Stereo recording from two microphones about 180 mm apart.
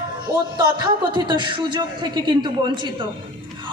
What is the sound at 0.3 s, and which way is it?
A man's voice, 25° right (ahead or behind).